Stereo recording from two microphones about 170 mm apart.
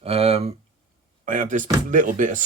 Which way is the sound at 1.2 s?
50° right (ahead or behind).